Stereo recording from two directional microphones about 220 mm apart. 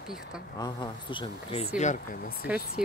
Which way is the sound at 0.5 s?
20° left (ahead or behind).